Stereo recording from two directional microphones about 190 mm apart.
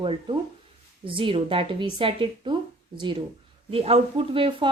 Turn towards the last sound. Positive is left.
turn(degrees=-30)  # may be behind; listen again after turning